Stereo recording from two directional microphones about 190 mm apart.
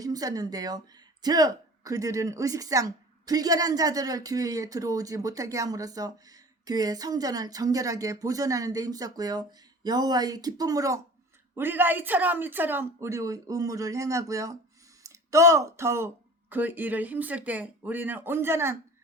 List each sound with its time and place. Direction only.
0.0 s speech: 20° right (ahead or behind)